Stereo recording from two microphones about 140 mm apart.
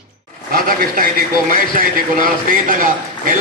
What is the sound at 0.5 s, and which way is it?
Speech, 90° right.